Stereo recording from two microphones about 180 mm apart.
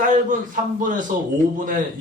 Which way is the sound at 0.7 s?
45° right (ahead or behind).